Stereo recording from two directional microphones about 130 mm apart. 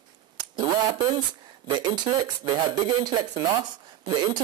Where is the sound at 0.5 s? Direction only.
35° right (ahead or behind).